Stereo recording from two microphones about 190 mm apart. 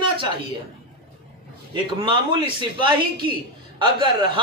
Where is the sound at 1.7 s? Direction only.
25° right (ahead or behind).